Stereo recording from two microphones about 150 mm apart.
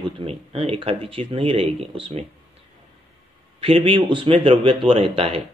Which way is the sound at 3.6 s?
35° right (ahead or behind).